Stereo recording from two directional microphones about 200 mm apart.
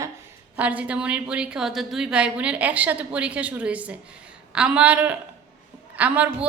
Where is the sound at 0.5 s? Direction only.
5° right (ahead or behind).